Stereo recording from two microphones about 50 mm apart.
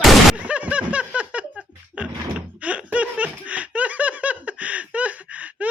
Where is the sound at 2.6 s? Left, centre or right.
Right.